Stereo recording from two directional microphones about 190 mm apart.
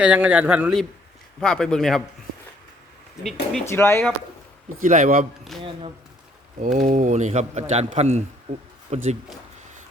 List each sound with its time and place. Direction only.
0.0 s a man's voice: 10° right (ahead or behind)
3.7 s speech: 15° left (ahead or behind)
4.8 s a man's voice: 45° right (ahead or behind)
5.5 s speech: centre (ahead or behind)
6.6 s a man's voice: 45° right (ahead or behind)